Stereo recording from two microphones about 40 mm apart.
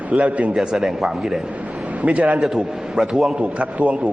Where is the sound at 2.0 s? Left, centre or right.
Right.